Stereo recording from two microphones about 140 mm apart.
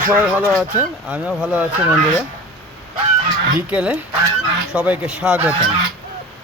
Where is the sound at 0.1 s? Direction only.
10° right (ahead or behind).